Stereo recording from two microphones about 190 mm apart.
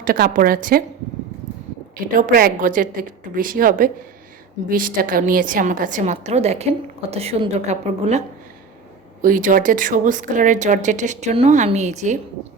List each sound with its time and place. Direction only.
0.0 s a woman's voice: 50° right (ahead or behind)
2.1 s a woman's voice: 50° right (ahead or behind)
9.2 s a woman's voice: 45° right (ahead or behind)